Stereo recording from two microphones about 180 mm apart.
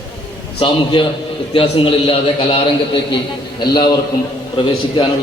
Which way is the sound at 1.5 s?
30° left (ahead or behind).